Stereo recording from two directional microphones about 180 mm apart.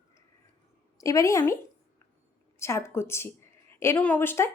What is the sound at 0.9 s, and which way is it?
Speech, 20° left (ahead or behind).